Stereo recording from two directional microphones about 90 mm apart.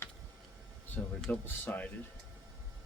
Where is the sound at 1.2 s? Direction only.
20° left (ahead or behind).